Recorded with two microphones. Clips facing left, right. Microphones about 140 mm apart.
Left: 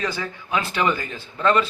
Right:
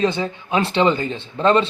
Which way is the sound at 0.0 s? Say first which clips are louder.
Right 7 dB; 25° right (ahead or behind).